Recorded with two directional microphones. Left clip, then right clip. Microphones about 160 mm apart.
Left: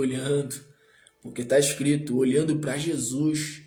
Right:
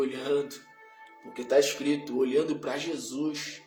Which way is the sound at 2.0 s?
90° left.